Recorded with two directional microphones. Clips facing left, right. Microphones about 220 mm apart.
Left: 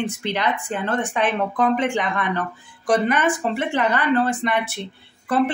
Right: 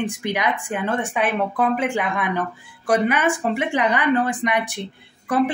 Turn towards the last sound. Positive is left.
turn(degrees=-15)  # may be behind; listen again after turning